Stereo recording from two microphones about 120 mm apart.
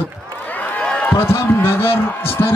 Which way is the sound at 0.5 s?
10° left (ahead or behind).